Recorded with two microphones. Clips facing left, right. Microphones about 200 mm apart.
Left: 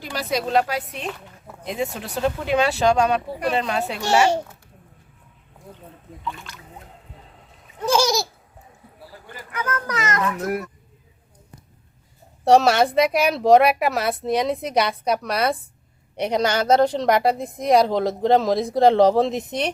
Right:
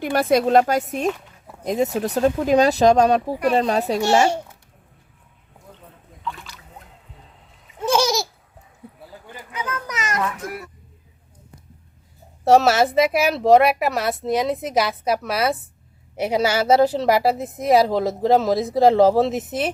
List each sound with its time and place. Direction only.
0.0 s speech: 55° right (ahead or behind); by 4.0 s 35° right (ahead or behind)
6.2 s speech: centre (ahead or behind)
7.8 s babbling: centre (ahead or behind)
9.6 s a child's voice: 10° right (ahead or behind)
10.4 s speech: 45° left (ahead or behind)
12.5 s speech: centre (ahead or behind)